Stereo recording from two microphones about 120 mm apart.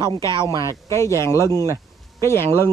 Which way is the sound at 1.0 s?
25° left (ahead or behind).